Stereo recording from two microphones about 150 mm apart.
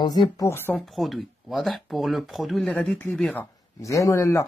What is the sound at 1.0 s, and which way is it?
Speech, centre (ahead or behind).